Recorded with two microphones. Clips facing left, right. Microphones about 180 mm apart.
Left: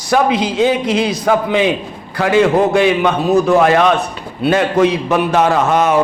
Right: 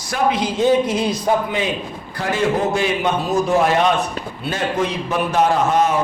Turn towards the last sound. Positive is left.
turn(degrees=70)  # may be behind; listen again after turning